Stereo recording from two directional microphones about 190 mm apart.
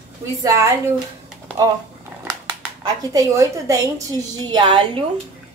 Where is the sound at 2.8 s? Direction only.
20° right (ahead or behind).